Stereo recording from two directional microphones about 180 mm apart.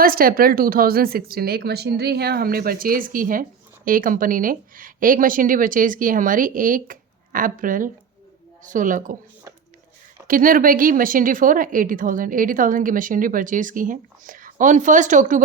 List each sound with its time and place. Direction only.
0.0 s a woman's voice: 55° right (ahead or behind)
10.2 s speech: 50° right (ahead or behind)